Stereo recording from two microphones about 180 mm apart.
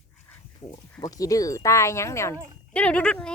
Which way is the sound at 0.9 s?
20° left (ahead or behind).